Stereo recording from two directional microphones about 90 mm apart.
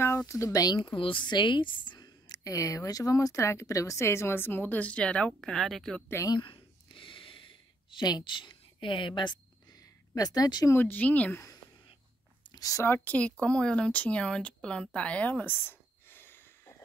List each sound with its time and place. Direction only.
0.3 s a woman's voice: 35° left (ahead or behind)
0.7 s a woman's voice: 70° left (ahead or behind); by 6.0 s 5° left (ahead or behind)
6.2 s a sound: 60° left (ahead or behind); by 10.7 s 45° left (ahead or behind)
10.7 s speech: 20° left (ahead or behind)
12.4 s a sound: 45° left (ahead or behind)
12.8 s speech: 20° left (ahead or behind)